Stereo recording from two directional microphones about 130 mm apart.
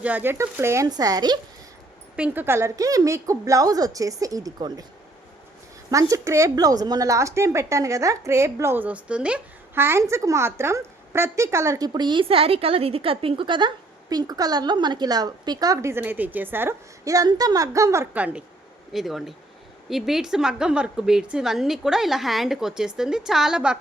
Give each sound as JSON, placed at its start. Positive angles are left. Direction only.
{"t": 0.0, "sound": "speech", "side_deg": -15}
{"t": 2.1, "sound": "speech", "side_deg": -10}
{"t": 5.9, "sound": "speech", "side_deg": -25}
{"t": 11.9, "sound": "a woman's voice", "side_deg": -35}
{"t": 18.9, "sound": "a woman's voice", "side_deg": 0}